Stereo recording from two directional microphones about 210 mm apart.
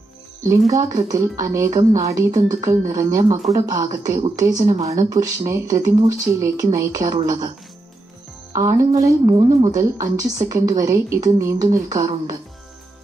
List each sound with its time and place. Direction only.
0.4 s a woman's voice: 15° right (ahead or behind)
8.5 s a woman's voice: 15° right (ahead or behind)